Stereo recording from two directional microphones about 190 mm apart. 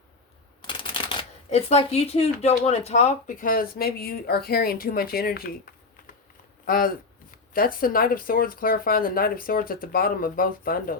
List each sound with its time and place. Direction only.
0.7 s speech: 25° left (ahead or behind); by 5.5 s 50° left (ahead or behind)
6.7 s speech: 50° left (ahead or behind)